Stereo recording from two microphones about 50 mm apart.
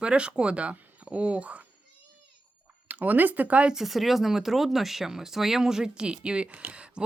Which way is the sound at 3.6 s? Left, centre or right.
Centre.